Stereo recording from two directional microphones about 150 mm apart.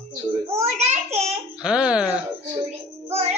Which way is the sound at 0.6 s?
45° right (ahead or behind).